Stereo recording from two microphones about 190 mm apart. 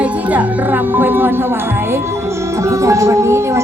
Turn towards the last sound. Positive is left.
turn(degrees=-15)  # may be behind; listen again after turning